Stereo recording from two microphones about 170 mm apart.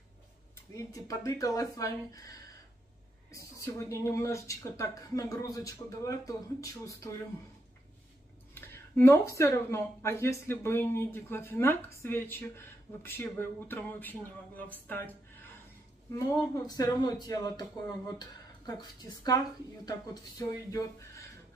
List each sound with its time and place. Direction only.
0.7 s speech: 20° left (ahead or behind)
8.5 s speech: 15° left (ahead or behind)
16.1 s speech: 20° left (ahead or behind)